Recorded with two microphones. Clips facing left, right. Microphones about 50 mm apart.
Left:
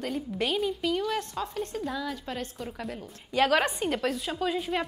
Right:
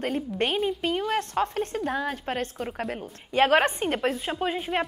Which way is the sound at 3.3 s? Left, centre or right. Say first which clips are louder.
Right 3 dB; right.